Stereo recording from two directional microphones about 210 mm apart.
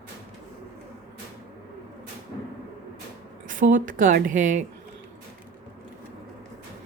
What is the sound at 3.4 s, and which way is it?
Speech, 40° right (ahead or behind).